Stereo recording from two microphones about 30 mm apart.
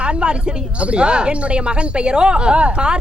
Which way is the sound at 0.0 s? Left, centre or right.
Right.